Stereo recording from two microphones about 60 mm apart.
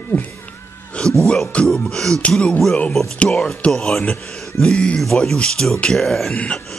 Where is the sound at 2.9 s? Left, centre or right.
Centre.